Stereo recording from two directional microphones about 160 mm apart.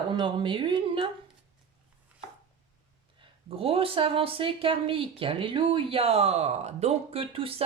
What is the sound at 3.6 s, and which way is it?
Speech, 35° right (ahead or behind).